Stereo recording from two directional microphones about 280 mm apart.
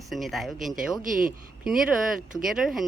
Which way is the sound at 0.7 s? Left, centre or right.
Right.